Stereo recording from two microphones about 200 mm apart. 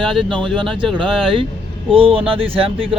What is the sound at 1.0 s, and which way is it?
Speech, 25° right (ahead or behind).